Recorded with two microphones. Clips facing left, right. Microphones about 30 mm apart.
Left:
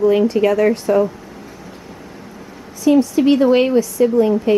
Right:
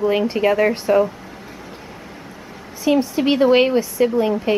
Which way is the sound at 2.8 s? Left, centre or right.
Right.